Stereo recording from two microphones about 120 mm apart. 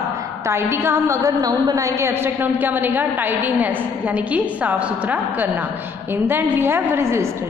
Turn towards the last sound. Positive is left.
turn(degrees=-20)  # may be behind; listen again after turning